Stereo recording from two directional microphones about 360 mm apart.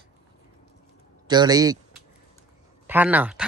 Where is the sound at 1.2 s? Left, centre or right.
Centre.